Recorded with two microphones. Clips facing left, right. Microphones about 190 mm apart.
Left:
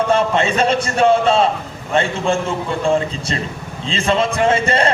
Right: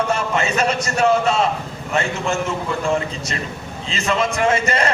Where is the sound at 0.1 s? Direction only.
30° left (ahead or behind).